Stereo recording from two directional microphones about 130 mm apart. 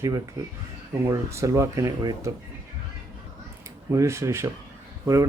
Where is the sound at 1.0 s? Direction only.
20° right (ahead or behind).